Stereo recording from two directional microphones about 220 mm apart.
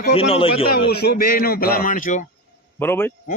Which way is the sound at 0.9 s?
45° left (ahead or behind).